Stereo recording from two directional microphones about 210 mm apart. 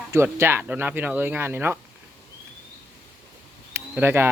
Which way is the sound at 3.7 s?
10° right (ahead or behind).